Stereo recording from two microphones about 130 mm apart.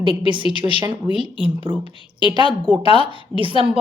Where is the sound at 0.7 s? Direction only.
45° left (ahead or behind).